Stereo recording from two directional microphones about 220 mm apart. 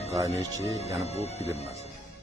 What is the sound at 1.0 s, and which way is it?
Speech, 30° left (ahead or behind).